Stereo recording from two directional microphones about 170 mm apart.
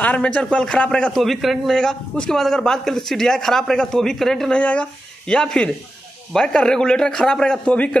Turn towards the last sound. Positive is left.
turn(degrees=5)  # may be behind; listen again after turning